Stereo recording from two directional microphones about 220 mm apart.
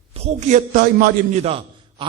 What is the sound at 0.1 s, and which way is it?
A man's voice, 30° right (ahead or behind).